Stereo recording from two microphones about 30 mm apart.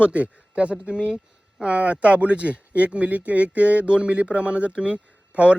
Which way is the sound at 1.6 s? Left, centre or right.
Right.